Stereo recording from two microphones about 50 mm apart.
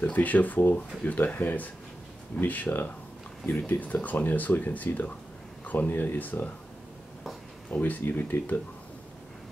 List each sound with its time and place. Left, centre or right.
0.0 s speech: left
7.7 s speech: left